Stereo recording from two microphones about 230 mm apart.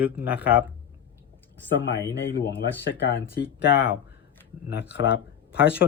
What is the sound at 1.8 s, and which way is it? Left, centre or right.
Speech, left.